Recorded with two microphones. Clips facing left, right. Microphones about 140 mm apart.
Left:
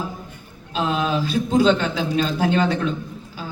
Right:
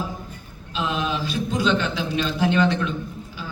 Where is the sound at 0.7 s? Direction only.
40° left (ahead or behind).